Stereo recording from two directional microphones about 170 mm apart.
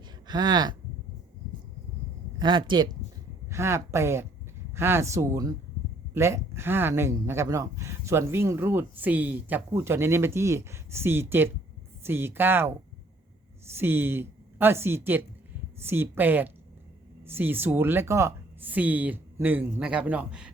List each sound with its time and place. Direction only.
0.3 s speech: 25° right (ahead or behind)
2.4 s speech: 25° right (ahead or behind); by 20.5 s 5° right (ahead or behind)